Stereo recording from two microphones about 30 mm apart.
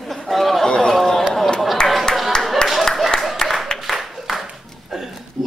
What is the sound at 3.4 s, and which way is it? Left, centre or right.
Applause, left.